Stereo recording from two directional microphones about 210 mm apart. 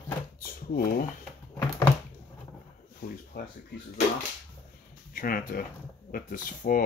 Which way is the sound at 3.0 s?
45° left (ahead or behind).